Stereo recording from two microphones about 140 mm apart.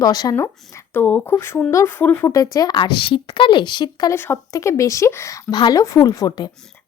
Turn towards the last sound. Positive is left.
turn(degrees=30)  # may be behind; listen again after turning